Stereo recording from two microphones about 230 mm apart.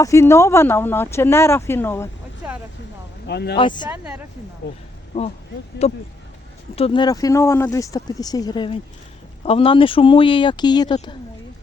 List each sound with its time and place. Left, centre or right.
0.0 s speech: centre
2.4 s vehicle: centre
3.2 s speech: left
3.6 s speech: centre
3.8 s speech: centre
5.8 s speech: left